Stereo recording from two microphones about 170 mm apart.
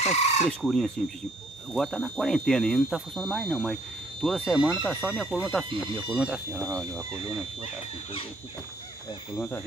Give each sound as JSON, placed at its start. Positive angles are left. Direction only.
{"t": 0.0, "sound": "speech", "side_deg": 40}
{"t": 0.5, "sound": "speech", "side_deg": 0}
{"t": 6.6, "sound": "speech", "side_deg": -20}